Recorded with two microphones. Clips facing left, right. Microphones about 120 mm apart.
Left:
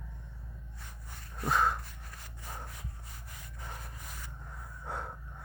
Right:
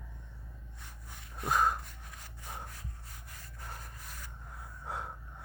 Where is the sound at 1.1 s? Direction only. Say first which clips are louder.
Left 1 dB; centre (ahead or behind).